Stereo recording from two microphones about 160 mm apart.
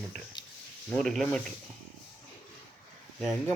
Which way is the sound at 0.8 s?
5° left (ahead or behind).